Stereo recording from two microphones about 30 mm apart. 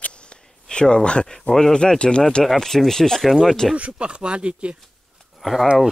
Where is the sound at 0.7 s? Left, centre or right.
Left.